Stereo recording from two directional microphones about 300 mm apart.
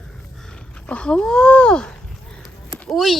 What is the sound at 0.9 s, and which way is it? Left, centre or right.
Speech, centre.